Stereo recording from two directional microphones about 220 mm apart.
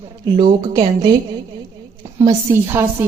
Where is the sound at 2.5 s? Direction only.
10° right (ahead or behind).